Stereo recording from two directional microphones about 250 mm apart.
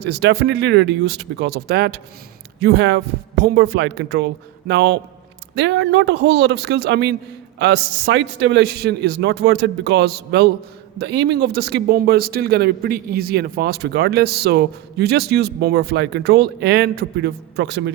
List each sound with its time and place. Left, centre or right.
0.0 s a man's voice: right